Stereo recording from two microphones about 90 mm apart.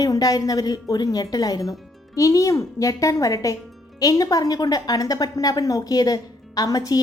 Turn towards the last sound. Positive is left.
turn(degrees=45)  # may be behind; listen again after turning